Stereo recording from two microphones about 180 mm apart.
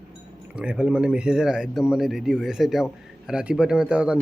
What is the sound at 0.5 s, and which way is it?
Speech, 5° right (ahead or behind).